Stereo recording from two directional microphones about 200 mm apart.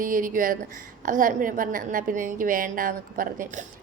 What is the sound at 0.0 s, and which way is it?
A woman's voice, 45° right (ahead or behind).